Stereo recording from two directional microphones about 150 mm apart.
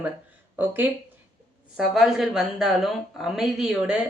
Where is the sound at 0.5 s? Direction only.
10° right (ahead or behind).